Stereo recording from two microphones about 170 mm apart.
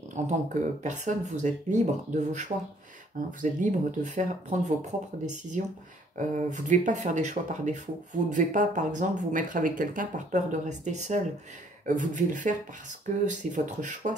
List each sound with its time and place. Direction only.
0.2 s speech: 45° right (ahead or behind)